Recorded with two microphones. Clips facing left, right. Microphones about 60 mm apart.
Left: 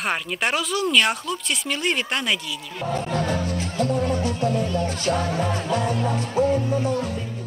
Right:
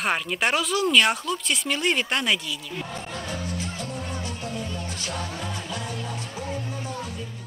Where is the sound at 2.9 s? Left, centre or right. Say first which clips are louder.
Left 14 dB; left.